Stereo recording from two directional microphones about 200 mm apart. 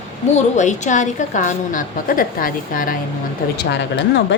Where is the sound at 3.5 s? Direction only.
55° left (ahead or behind).